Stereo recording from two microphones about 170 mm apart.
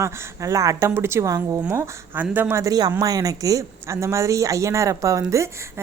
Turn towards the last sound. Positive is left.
turn(degrees=-15)  # may be behind; listen again after turning